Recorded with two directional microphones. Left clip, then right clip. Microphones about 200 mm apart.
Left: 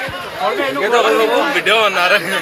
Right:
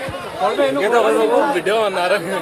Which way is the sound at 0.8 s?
30° right (ahead or behind).